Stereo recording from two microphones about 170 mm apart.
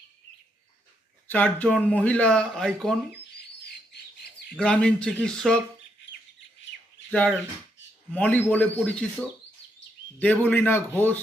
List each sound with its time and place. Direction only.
1.3 s speech: 10° left (ahead or behind)
4.5 s speech: 5° left (ahead or behind)
7.1 s speech: 10° left (ahead or behind)
10.2 s speech: 10° left (ahead or behind)